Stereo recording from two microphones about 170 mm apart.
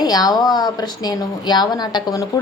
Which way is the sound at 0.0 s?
25° left (ahead or behind).